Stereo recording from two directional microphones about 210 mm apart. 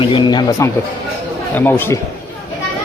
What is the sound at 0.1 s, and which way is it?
A man's voice, 20° left (ahead or behind).